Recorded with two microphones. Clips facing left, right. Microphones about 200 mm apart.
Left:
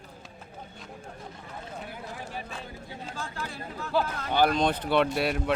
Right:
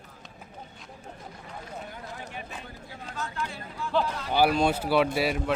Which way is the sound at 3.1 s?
30° left (ahead or behind).